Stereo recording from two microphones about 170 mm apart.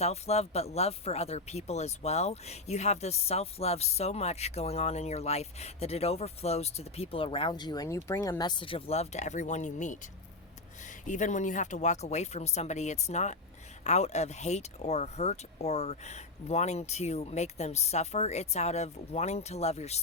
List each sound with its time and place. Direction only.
0.0 s speech: 40° left (ahead or behind)